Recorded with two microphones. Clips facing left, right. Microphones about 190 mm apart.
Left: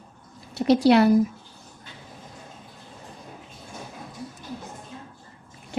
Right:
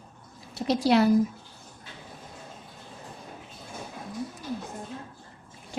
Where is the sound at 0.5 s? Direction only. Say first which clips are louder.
Left 5 dB; 65° left (ahead or behind).